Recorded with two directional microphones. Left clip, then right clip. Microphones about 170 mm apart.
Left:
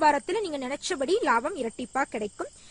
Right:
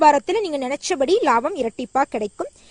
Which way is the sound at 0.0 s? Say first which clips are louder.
Right 8 dB; 40° right (ahead or behind).